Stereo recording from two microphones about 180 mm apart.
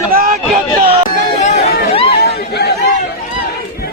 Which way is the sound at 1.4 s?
35° left (ahead or behind).